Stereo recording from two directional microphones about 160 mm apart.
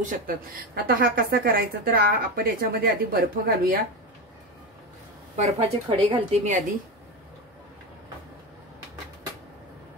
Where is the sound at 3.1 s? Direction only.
85° right.